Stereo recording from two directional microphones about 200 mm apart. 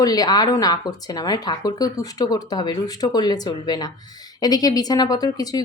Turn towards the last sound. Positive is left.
turn(degrees=20)  # may be behind; listen again after turning